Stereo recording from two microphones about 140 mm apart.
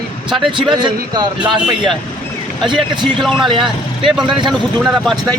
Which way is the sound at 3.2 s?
Centre (ahead or behind).